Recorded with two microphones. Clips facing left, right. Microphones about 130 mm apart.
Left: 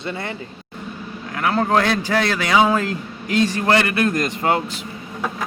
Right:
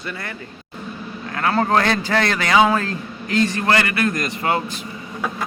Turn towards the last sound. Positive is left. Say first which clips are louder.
# left 2 dB
turn(degrees=20)  # may be behind; listen again after turning